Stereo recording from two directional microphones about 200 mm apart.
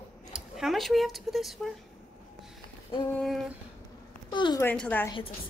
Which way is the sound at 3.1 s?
Centre (ahead or behind).